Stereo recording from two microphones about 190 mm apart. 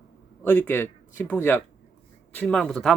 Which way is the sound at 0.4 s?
5° left (ahead or behind).